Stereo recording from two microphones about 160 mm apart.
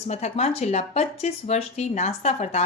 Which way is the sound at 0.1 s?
45° left (ahead or behind).